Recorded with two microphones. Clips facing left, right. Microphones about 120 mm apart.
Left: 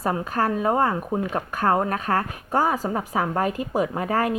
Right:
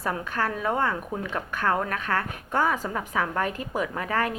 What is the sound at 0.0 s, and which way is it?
Speech, 35° left (ahead or behind).